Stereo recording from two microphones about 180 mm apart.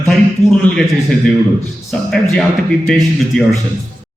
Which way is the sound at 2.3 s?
5° left (ahead or behind).